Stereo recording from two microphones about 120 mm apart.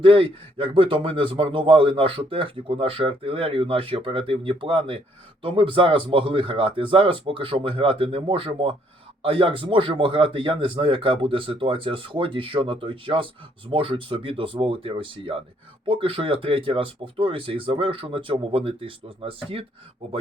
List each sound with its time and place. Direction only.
0.0 s speech: 45° right (ahead or behind)